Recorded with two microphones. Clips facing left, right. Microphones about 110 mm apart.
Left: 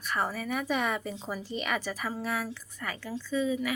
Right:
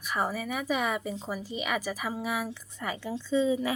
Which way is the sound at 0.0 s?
10° right (ahead or behind).